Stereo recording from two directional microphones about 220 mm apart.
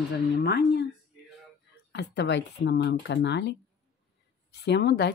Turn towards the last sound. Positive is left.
turn(degrees=50)  # may be behind; listen again after turning